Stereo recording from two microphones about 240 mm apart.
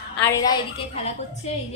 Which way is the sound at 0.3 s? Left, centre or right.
Centre.